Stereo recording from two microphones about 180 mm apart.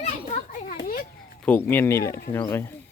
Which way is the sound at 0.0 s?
40° left (ahead or behind).